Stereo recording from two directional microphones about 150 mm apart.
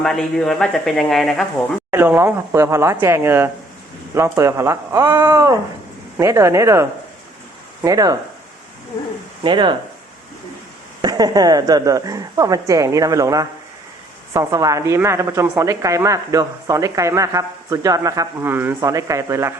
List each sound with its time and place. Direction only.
0.0 s speech: 5° left (ahead or behind)
1.9 s speech: 15° right (ahead or behind)
9.4 s speech: 30° right (ahead or behind)
11.0 s speech: 25° right (ahead or behind)